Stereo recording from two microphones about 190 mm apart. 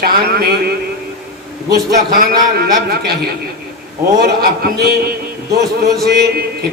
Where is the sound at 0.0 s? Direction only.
50° right (ahead or behind).